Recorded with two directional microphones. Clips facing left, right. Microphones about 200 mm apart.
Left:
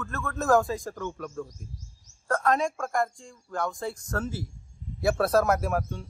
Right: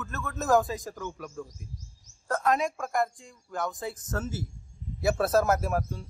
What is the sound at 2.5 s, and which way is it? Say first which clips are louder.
Speech: even; 5° right (ahead or behind).